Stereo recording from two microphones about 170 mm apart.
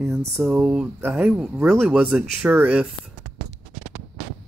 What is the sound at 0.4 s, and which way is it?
Speech, 10° right (ahead or behind).